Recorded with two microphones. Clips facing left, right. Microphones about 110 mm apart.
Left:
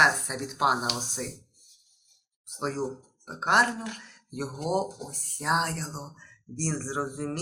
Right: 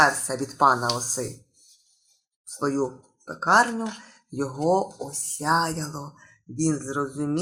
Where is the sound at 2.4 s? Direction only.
35° right (ahead or behind).